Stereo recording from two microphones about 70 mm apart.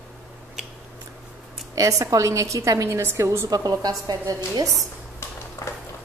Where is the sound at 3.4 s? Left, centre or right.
Right.